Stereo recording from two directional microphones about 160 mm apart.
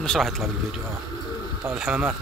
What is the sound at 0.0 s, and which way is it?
Speech, centre (ahead or behind).